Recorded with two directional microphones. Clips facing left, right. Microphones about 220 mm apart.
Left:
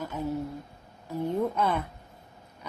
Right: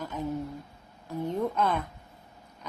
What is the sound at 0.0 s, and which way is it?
A woman's voice, 10° left (ahead or behind).